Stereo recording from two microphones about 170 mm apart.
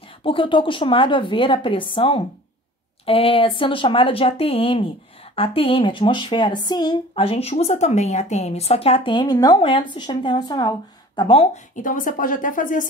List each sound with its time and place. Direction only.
0.2 s a woman's voice: 30° left (ahead or behind)
11.7 s a woman's voice: 50° left (ahead or behind)